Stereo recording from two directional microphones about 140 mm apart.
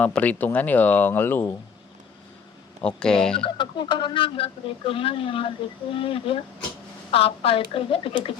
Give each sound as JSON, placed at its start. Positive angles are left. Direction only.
{"t": 0.0, "sound": "speech", "side_deg": 10}
{"t": 2.8, "sound": "speech", "side_deg": 5}
{"t": 3.4, "sound": "speech", "side_deg": 35}